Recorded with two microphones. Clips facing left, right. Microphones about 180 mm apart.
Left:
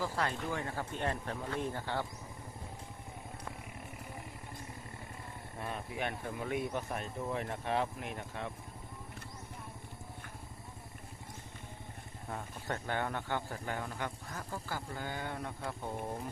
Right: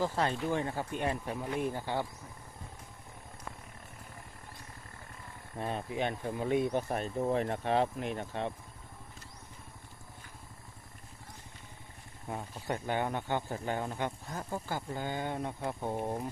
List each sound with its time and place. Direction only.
0.0 s speech: 20° right (ahead or behind)
5.5 s speech: 30° right (ahead or behind)
12.3 s speech: 15° right (ahead or behind)